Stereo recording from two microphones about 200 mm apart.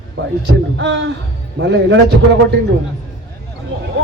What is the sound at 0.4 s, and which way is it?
Speech, 65° right (ahead or behind).